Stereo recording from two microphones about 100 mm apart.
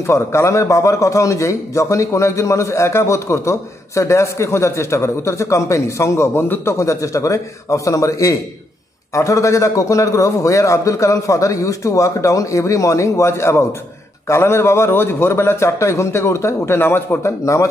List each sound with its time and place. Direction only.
0.0 s a man's voice: 30° left (ahead or behind)